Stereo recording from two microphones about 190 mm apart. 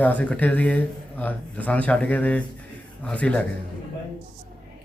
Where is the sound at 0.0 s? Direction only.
5° left (ahead or behind).